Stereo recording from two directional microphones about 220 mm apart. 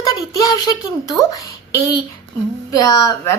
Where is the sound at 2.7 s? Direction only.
15° left (ahead or behind).